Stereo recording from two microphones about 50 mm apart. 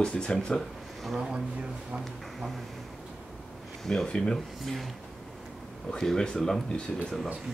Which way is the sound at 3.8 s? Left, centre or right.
Centre.